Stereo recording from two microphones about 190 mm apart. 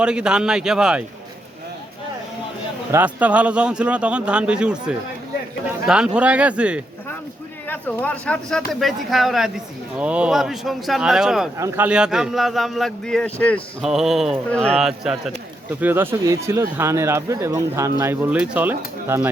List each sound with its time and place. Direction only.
0.0 s speech: 5° right (ahead or behind)
2.9 s speech: 10° right (ahead or behind)
7.7 s speech: 10° left (ahead or behind)
11.5 s speech: 15° right (ahead or behind)
11.9 s speech: 5° right (ahead or behind)